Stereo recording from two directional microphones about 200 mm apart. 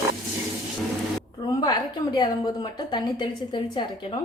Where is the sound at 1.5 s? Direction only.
20° left (ahead or behind).